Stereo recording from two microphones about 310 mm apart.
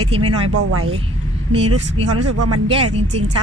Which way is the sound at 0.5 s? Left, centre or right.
Right.